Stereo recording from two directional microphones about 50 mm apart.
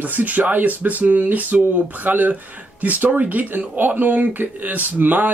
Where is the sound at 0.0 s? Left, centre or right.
Right.